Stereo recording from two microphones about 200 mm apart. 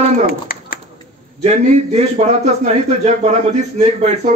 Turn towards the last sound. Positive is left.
turn(degrees=-35)  # may be behind; listen again after turning